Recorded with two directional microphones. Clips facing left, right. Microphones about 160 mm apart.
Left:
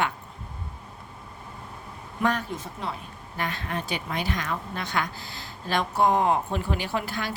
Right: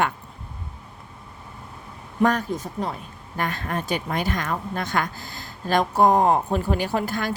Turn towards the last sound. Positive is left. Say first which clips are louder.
# right 5 dB
turn(degrees=-45)  # may be behind; listen again after turning